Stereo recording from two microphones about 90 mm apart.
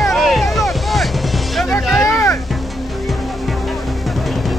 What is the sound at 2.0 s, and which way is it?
Music, 40° left (ahead or behind).